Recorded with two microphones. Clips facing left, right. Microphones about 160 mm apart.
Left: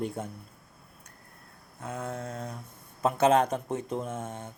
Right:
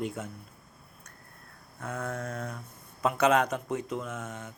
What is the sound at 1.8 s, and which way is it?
A man's voice, 20° left (ahead or behind).